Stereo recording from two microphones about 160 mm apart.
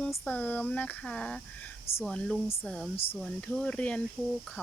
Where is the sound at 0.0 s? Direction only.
5° left (ahead or behind).